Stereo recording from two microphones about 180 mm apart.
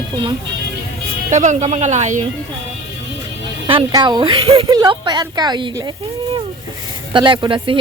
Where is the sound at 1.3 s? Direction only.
40° right (ahead or behind).